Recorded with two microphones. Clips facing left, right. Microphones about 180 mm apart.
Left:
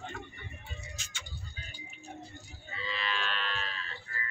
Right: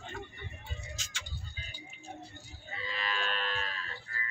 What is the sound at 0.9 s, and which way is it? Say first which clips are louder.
Vehicle: right 1 dB; 90° right.